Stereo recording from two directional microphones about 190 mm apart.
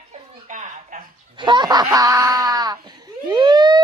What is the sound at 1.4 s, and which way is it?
Laughter, 25° right (ahead or behind).